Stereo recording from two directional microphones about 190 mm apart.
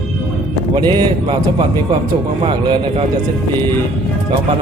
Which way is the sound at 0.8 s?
25° right (ahead or behind).